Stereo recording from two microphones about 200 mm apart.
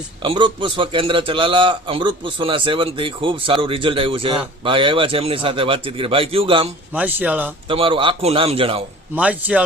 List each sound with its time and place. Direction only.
0.2 s a man's voice: 25° right (ahead or behind)
6.9 s a man's voice: 5° right (ahead or behind)
7.7 s a man's voice: 25° right (ahead or behind)
9.1 s a man's voice: 5° right (ahead or behind)